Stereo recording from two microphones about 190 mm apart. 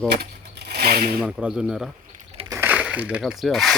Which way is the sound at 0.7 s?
50° right (ahead or behind).